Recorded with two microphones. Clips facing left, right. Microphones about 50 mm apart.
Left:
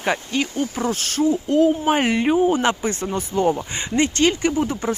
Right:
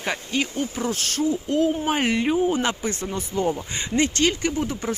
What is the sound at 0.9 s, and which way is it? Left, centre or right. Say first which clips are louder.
Speech: left 5 dB; centre.